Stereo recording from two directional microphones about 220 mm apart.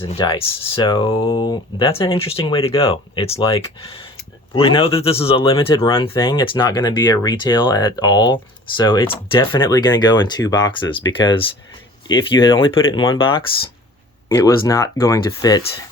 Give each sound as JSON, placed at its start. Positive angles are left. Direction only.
{"t": 0.0, "sound": "speech", "side_deg": 25}